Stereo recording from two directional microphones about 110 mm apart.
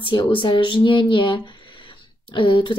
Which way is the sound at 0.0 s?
50° left (ahead or behind).